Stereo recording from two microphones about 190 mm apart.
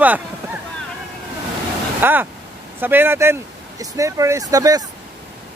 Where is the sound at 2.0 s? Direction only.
10° right (ahead or behind).